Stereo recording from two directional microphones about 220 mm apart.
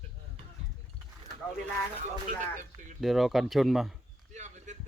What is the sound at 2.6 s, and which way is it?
Speech, 35° right (ahead or behind).